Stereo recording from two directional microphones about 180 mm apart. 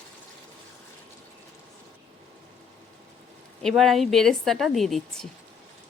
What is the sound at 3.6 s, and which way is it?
A woman's voice, centre (ahead or behind).